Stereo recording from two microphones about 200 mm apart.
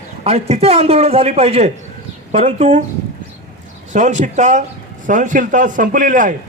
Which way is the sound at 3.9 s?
35° right (ahead or behind).